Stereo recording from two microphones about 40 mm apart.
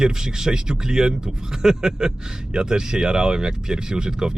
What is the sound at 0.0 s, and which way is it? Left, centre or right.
Speech, centre.